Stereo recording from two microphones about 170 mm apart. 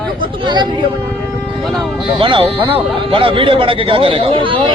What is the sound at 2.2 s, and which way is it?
Speech, 30° right (ahead or behind).